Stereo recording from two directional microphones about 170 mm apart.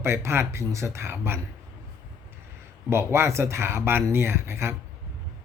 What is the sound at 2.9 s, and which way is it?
Speech, 15° right (ahead or behind).